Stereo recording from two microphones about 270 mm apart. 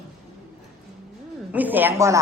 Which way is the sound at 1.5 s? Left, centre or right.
Centre.